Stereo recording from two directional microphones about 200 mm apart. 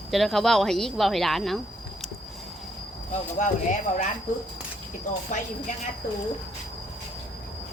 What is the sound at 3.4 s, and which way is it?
Speech, 40° left (ahead or behind).